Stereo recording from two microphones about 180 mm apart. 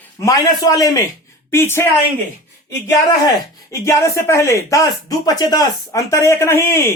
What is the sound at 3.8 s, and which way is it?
Speech, 15° left (ahead or behind).